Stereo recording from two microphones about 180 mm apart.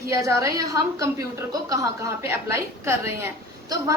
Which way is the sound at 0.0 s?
15° right (ahead or behind).